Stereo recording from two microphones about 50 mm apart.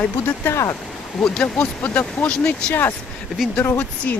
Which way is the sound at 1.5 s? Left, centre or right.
Left.